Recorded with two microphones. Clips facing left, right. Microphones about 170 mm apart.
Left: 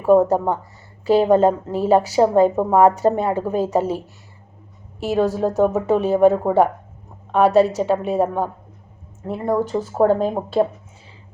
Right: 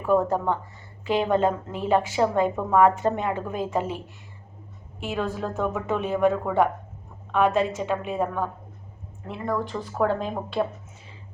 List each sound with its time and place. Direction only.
0.0 s speech: 40° left (ahead or behind)